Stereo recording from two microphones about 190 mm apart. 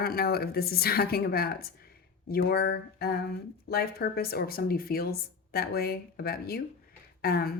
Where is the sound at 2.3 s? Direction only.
55° left (ahead or behind).